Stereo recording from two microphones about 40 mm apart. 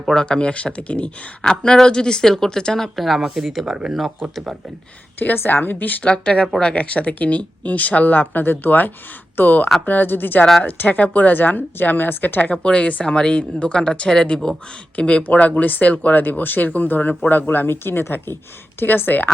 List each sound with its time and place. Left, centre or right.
0.1 s speech: left
1.5 s speech: centre
2.7 s speech: centre
5.3 s speech: left
6.0 s speech: left
10.8 s speech: left
12.6 s speech: left
14.9 s speech: left
17.5 s speech: left